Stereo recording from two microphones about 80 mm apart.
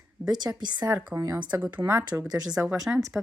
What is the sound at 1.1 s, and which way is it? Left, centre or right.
Speech, right.